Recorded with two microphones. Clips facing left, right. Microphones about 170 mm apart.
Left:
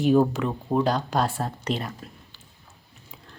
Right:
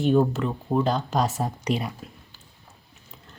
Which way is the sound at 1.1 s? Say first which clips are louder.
Right 1 dB; 5° right (ahead or behind).